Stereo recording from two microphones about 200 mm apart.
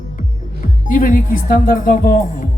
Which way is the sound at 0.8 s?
40° left (ahead or behind).